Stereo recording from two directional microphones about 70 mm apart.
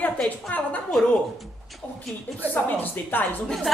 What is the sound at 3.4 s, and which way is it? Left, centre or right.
Speech, centre.